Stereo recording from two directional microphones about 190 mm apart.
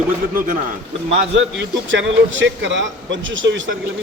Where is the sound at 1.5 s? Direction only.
70° right (ahead or behind).